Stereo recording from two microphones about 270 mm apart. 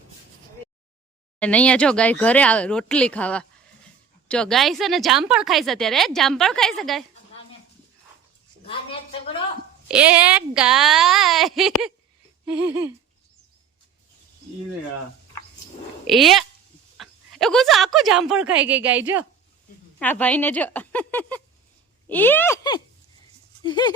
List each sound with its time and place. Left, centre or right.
1.4 s speech: centre
9.9 s speech: centre
16.0 s speech: centre
20.0 s speech: centre